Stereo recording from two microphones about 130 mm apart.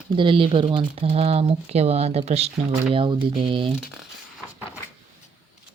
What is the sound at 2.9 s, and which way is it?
Speech, 40° right (ahead or behind).